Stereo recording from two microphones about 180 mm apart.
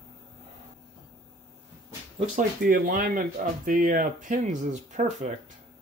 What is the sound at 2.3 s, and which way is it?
Speech, 50° right (ahead or behind).